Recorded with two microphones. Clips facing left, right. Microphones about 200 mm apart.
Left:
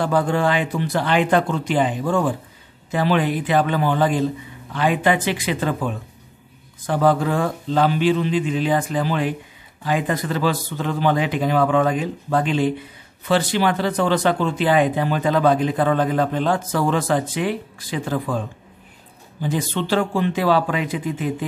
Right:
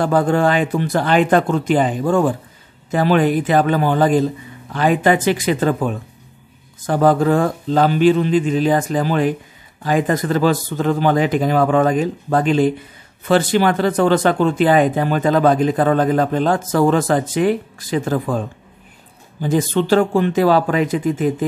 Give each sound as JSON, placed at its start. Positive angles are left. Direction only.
{"t": 0.0, "sound": "speech", "side_deg": -50}
{"t": 19.4, "sound": "speech", "side_deg": -45}